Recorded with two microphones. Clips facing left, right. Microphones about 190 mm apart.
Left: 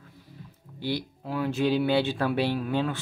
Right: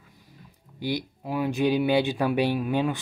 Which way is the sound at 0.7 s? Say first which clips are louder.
Right 1 dB; 15° right (ahead or behind).